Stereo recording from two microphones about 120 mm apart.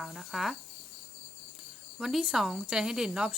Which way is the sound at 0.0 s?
Centre (ahead or behind).